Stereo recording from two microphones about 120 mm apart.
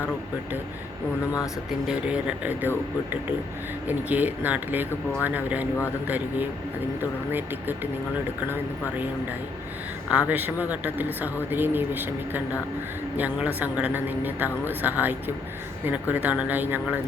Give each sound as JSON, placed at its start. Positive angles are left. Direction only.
{"t": 1.9, "sound": "speech", "side_deg": -10}
{"t": 10.1, "sound": "speech", "side_deg": -15}
{"t": 16.1, "sound": "speech", "side_deg": -10}